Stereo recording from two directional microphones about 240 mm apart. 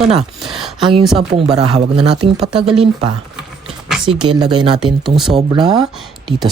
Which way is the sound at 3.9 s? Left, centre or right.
Centre.